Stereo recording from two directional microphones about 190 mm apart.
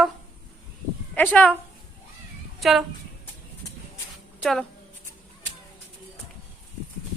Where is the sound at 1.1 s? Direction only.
10° left (ahead or behind).